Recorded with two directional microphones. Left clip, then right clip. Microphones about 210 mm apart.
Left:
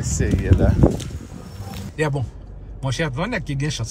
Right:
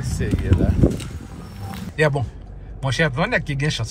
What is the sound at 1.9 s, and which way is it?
A man's voice, 10° left (ahead or behind).